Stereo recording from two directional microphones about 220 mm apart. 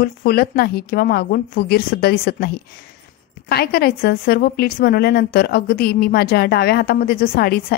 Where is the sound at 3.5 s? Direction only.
45° left (ahead or behind).